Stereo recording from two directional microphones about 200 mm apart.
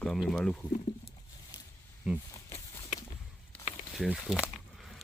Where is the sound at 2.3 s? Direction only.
15° left (ahead or behind).